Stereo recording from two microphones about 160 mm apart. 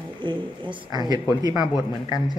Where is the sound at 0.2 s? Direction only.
30° right (ahead or behind).